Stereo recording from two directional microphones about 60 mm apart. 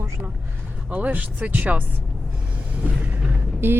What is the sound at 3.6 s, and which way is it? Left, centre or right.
Speech, right.